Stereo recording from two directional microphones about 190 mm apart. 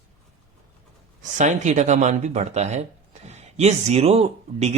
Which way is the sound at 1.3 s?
40° right (ahead or behind).